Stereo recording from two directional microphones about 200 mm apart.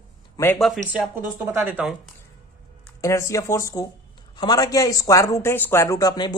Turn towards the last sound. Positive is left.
turn(degrees=20)  # may be behind; listen again after turning